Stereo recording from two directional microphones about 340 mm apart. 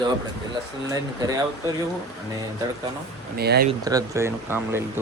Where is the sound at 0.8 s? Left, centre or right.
Centre.